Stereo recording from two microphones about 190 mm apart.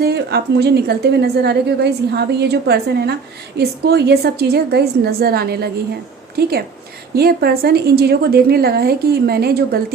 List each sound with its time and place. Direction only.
0.0 s a woman's voice: 60° right (ahead or behind)
7.2 s a woman's voice: 55° right (ahead or behind)